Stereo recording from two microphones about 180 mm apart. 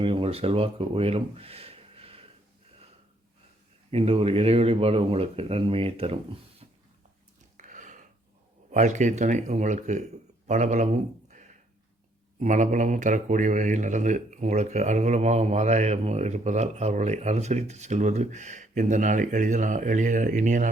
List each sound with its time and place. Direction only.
0.0 s speech: 30° right (ahead or behind)
3.9 s a man's voice: 35° right (ahead or behind)
7.5 s a sound: 45° right (ahead or behind)
8.7 s a man's voice: 40° right (ahead or behind)